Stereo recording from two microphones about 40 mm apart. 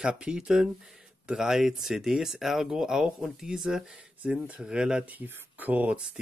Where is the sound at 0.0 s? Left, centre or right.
Right.